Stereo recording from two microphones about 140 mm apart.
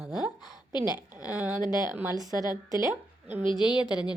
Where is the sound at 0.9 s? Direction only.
10° right (ahead or behind).